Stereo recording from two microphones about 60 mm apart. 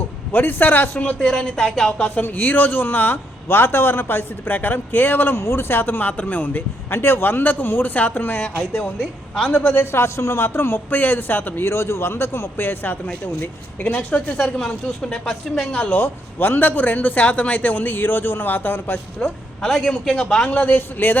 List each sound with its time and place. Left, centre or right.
0.3 s a man's voice: left
1.2 s speech: centre
2.0 s a man's voice: left
6.9 s a man's voice: left; by 9.6 s centre
9.7 s a man's voice: left
11.6 s a man's voice: left
14.4 s speech: centre
15.8 s a man's voice: left
19.2 s speech: centre
20.6 s a man's voice: left